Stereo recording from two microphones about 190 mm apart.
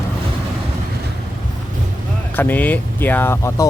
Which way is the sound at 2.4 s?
10° left (ahead or behind).